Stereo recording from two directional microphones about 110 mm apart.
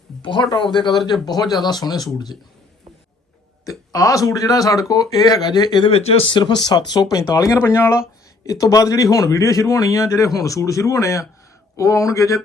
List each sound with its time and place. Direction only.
0.2 s speech: 45° left (ahead or behind)
3.7 s speech: 30° left (ahead or behind)
5.9 s speech: 65° left (ahead or behind); by 12.4 s 30° left (ahead or behind)